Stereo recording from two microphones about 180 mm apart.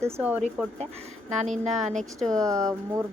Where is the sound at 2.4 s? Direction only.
20° right (ahead or behind).